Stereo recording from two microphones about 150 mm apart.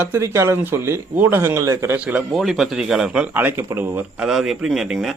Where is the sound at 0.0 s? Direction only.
15° right (ahead or behind).